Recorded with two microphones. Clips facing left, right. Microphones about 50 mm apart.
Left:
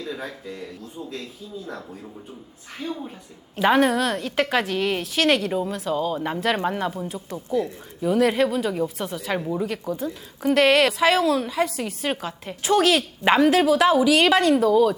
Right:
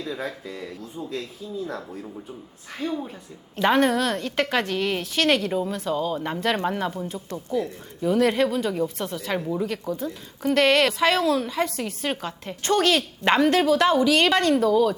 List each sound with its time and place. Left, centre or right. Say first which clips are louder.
0.2 s speech: right 2 dB; right
2.8 s speech: right 3 dB; right
3.5 s a woman's voice: left 1 dB; centre